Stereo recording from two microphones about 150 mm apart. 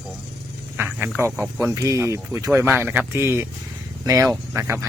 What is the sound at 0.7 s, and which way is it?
Speech, 15° right (ahead or behind).